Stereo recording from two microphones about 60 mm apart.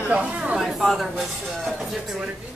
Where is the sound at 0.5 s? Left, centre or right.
Centre.